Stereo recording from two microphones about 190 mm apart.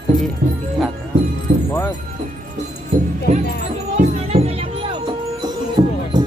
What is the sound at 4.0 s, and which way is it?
Music, 35° right (ahead or behind).